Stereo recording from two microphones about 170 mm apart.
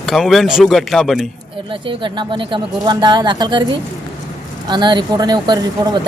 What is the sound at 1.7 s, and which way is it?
Speech, 30° right (ahead or behind).